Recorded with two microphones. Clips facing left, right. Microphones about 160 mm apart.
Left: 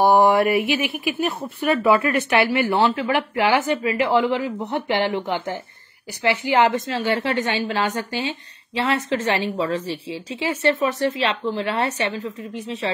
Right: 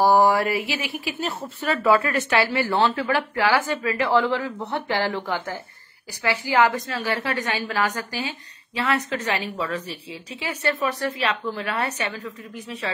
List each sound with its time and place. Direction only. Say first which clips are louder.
0.0 s a woman's voice: left 2 dB; 20° left (ahead or behind)